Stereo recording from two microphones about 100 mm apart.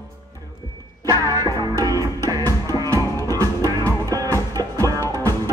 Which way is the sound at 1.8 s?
40° right (ahead or behind).